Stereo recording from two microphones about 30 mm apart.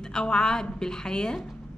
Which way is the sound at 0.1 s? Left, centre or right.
Left.